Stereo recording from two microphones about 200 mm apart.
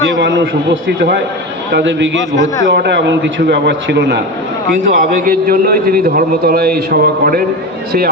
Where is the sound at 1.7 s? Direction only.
60° right (ahead or behind).